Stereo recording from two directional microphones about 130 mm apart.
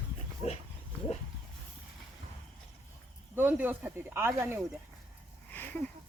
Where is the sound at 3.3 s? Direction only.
15° right (ahead or behind).